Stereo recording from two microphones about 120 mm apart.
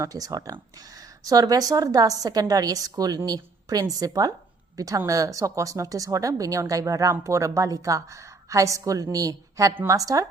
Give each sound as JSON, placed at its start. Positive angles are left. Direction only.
{"t": 0.0, "sound": "speech", "side_deg": -30}